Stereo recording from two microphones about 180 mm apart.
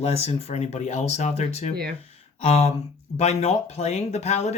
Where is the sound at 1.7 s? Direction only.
55° right (ahead or behind).